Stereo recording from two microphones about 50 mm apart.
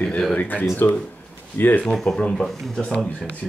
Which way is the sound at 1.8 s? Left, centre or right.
Centre.